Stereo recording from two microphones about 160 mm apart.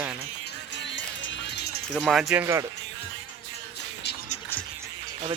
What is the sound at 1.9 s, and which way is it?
Speech, centre (ahead or behind).